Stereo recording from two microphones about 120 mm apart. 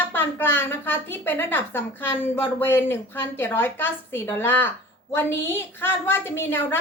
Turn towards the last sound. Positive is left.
turn(degrees=20)  # may be behind; listen again after turning